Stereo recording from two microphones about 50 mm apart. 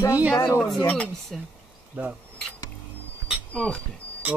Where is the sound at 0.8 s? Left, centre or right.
Left.